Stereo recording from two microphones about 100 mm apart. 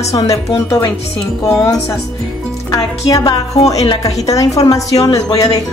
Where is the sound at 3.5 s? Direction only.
90° left.